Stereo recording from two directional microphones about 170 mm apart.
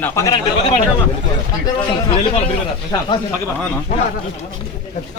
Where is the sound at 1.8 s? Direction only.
35° left (ahead or behind).